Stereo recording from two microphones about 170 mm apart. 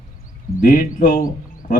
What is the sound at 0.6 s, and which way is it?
Speech, 55° left (ahead or behind).